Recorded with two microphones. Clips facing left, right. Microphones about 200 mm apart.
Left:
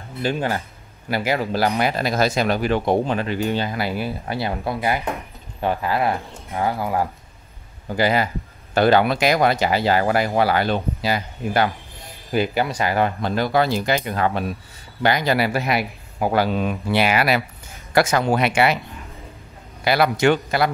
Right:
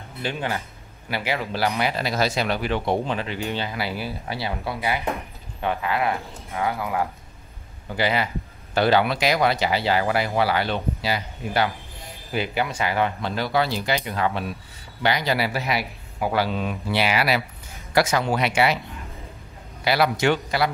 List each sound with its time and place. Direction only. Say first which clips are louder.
0.2 s speech: left 5 dB; 40° left (ahead or behind)
19.8 s speech: left 3 dB; 50° left (ahead or behind)